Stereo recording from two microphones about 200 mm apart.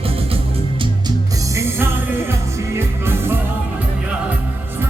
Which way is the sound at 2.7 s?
10° right (ahead or behind).